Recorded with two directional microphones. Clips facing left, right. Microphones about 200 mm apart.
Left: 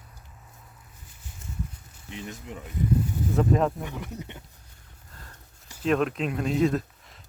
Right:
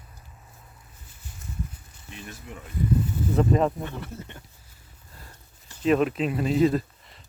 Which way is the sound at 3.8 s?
15° left (ahead or behind).